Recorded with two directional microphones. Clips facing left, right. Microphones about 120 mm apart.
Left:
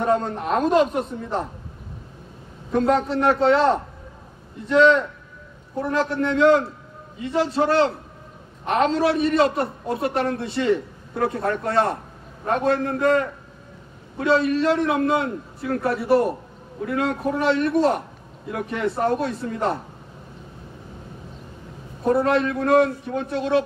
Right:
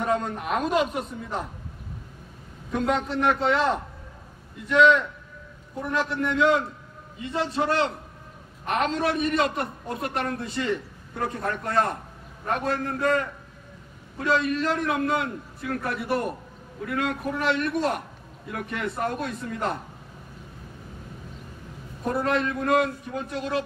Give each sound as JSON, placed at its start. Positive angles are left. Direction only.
{"t": 0.0, "sound": "a man's voice", "side_deg": 30}
{"t": 2.7, "sound": "a man's voice", "side_deg": 35}
{"t": 22.0, "sound": "a man's voice", "side_deg": 35}